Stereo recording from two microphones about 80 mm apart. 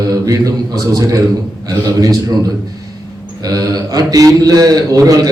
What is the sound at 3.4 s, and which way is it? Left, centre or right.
A man's voice, right.